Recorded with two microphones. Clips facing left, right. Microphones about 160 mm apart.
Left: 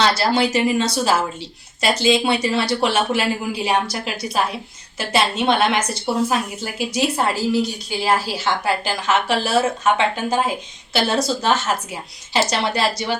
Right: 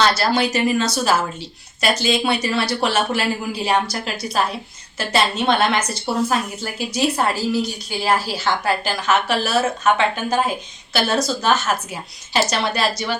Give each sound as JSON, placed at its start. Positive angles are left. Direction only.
{"t": 0.2, "sound": "speech", "side_deg": 25}